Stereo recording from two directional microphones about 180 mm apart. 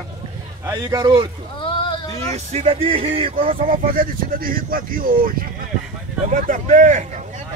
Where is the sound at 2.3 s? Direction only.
35° right (ahead or behind).